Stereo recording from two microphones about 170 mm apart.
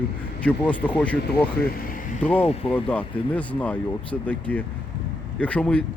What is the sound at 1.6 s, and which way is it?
Speech, 60° left (ahead or behind).